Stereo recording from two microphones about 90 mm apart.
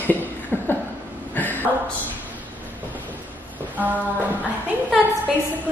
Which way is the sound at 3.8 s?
20° right (ahead or behind).